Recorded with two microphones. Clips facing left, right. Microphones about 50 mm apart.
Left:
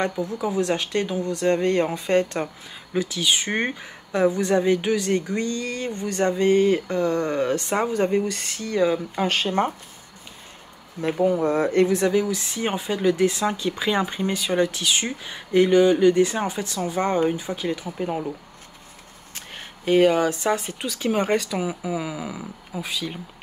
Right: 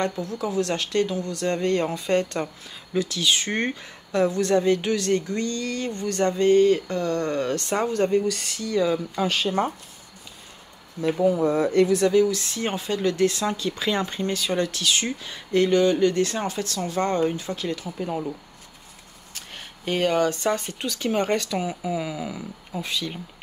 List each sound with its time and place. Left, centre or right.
0.2 s speech: centre
8.3 s speech: left
11.1 s speech: left; by 18.2 s centre
19.8 s speech: centre